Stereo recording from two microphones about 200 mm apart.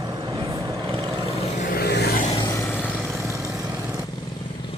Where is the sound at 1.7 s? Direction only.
55° left (ahead or behind).